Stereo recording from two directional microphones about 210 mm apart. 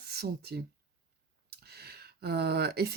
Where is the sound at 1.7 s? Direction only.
50° right (ahead or behind).